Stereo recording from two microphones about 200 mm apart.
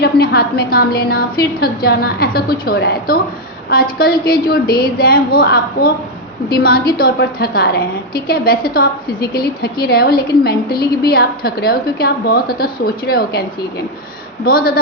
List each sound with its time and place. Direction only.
0.0 s a woman's voice: 50° left (ahead or behind)
14.4 s a woman's voice: 50° left (ahead or behind)